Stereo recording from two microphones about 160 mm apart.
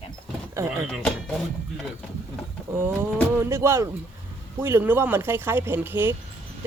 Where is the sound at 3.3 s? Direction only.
15° right (ahead or behind).